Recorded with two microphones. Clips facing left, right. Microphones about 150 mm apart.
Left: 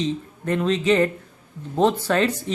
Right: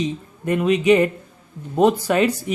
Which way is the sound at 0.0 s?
10° right (ahead or behind).